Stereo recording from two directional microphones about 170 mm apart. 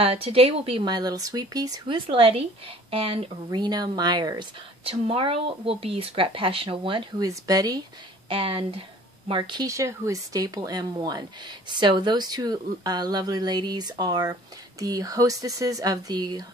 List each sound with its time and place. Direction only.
0.0 s speech: 35° right (ahead or behind)
8.3 s speech: 30° right (ahead or behind)